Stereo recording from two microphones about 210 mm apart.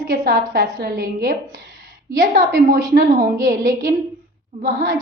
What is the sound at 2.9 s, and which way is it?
Speech, 40° right (ahead or behind).